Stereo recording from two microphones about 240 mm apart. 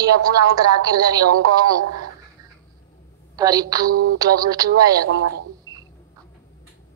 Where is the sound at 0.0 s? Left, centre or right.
Centre.